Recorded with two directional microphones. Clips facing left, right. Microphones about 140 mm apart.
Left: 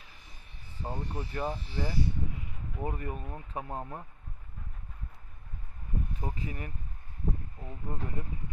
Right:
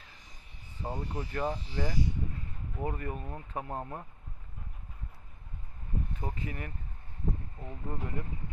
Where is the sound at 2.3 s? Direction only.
15° left (ahead or behind).